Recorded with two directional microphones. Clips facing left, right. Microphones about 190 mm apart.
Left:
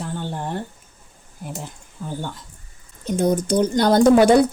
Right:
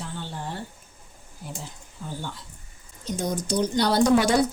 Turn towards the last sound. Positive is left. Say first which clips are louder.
# left 7 dB
turn(degrees=55)  # may be behind; listen again after turning